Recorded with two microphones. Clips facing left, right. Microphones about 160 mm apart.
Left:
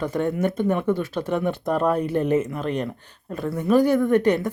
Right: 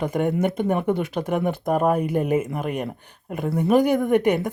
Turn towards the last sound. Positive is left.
turn(degrees=-15)  # may be behind; listen again after turning